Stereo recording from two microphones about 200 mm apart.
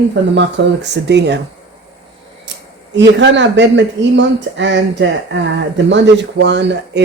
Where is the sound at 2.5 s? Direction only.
65° right (ahead or behind).